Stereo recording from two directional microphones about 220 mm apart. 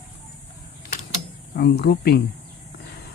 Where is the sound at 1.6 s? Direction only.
45° left (ahead or behind).